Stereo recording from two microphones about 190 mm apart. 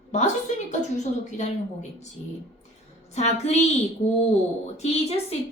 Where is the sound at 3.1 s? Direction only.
35° left (ahead or behind).